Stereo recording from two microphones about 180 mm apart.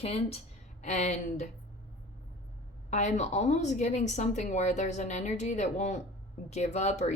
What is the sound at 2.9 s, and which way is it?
A woman's voice, 40° left (ahead or behind).